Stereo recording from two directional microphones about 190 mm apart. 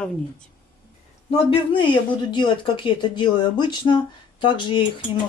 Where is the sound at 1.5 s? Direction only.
25° left (ahead or behind).